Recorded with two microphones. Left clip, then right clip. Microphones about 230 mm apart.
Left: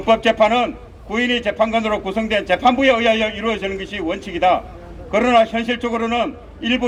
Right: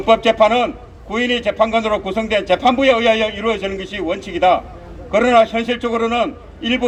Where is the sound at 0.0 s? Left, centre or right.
Left.